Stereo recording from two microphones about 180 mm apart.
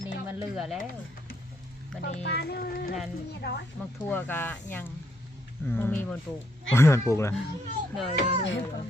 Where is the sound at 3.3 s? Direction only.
65° left (ahead or behind).